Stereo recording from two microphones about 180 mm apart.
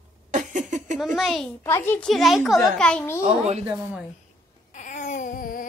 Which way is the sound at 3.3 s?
35° right (ahead or behind).